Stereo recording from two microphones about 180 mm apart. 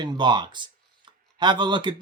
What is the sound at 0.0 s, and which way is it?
Speech, 25° right (ahead or behind).